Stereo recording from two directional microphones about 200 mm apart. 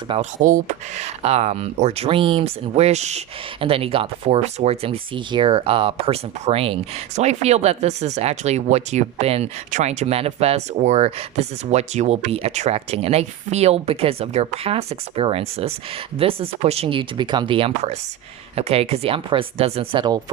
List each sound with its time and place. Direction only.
0.1 s speech: 35° right (ahead or behind)